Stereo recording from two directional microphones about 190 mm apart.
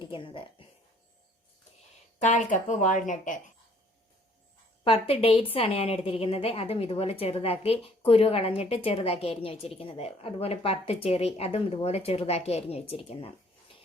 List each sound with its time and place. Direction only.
0.1 s speech: 25° left (ahead or behind)
2.2 s a woman's voice: 40° left (ahead or behind)
4.9 s a woman's voice: 30° left (ahead or behind)